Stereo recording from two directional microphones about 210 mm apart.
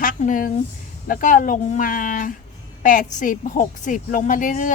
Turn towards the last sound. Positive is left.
turn(degrees=40)  # may be behind; listen again after turning